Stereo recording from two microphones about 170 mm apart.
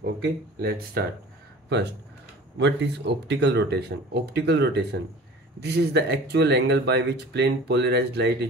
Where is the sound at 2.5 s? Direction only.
90° right.